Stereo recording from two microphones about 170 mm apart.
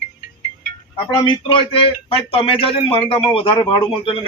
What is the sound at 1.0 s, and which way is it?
A man's voice, 30° left (ahead or behind).